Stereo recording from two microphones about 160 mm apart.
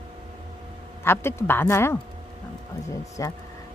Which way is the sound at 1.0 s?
15° left (ahead or behind).